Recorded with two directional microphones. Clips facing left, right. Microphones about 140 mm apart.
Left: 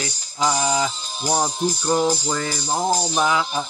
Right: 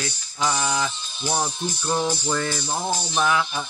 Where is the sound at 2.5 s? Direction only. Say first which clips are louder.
Left 4 dB; 40° left (ahead or behind).